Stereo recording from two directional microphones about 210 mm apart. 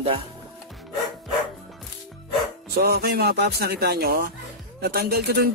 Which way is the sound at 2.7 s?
45° right (ahead or behind).